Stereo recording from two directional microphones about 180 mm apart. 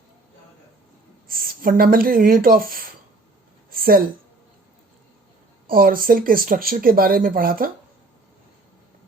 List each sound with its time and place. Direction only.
1.3 s speech: 55° right (ahead or behind)
3.7 s a sound: 55° right (ahead or behind)
5.6 s speech: 55° right (ahead or behind)